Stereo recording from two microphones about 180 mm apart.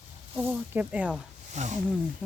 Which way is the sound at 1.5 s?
40° right (ahead or behind).